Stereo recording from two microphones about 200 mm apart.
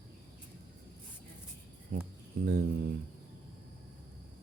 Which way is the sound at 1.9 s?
45° right (ahead or behind).